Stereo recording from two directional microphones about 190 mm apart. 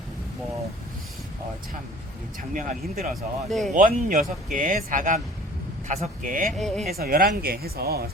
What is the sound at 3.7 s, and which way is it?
Speech, 45° right (ahead or behind).